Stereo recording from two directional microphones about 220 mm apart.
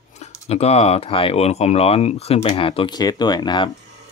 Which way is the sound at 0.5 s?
30° left (ahead or behind).